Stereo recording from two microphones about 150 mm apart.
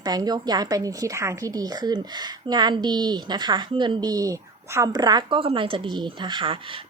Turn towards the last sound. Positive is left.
turn(degrees=-30)  # may be behind; listen again after turning